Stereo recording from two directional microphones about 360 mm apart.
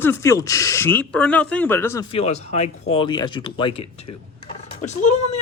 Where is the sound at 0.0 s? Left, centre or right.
Centre.